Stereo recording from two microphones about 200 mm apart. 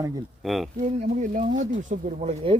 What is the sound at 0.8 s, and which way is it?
Speech, 35° right (ahead or behind).